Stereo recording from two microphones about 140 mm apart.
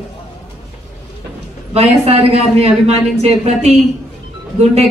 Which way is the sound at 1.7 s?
50° right (ahead or behind).